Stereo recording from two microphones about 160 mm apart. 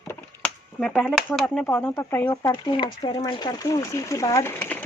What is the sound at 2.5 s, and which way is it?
Speech, 30° left (ahead or behind).